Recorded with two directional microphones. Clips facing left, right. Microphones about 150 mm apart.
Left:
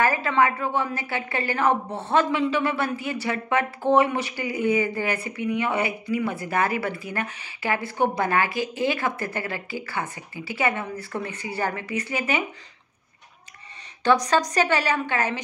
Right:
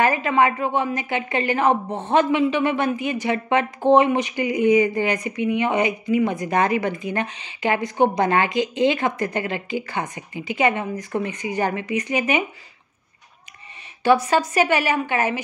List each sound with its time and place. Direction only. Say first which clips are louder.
0.0 s a woman's voice: right 3 dB; 15° right (ahead or behind)
14.0 s a woman's voice: right 3 dB; 10° right (ahead or behind)